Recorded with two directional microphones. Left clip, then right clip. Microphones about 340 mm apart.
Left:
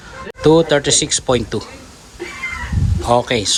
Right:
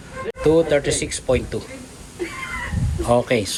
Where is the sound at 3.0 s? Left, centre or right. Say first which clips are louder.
Left 3 dB; centre.